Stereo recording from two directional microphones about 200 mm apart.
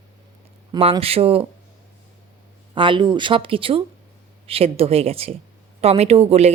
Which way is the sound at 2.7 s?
25° right (ahead or behind).